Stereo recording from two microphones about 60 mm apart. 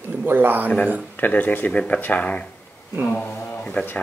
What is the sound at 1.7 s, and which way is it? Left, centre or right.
Speech, left.